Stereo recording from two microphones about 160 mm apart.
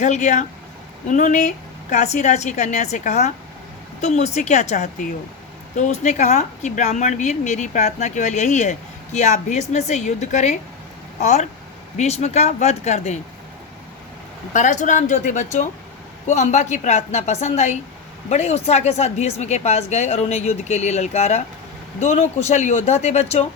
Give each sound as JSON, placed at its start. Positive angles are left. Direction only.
{"t": 0.0, "sound": "a woman's voice", "side_deg": 50}
{"t": 14.5, "sound": "a woman's voice", "side_deg": 50}